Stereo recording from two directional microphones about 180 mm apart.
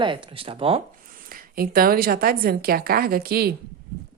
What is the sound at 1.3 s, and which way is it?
A woman's voice, 55° right (ahead or behind).